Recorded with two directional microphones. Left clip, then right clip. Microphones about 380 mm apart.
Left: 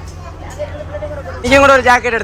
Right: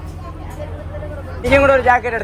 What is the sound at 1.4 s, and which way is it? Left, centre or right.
Speech, centre.